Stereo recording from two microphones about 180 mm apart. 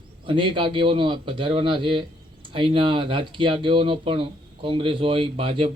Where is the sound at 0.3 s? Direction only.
30° right (ahead or behind).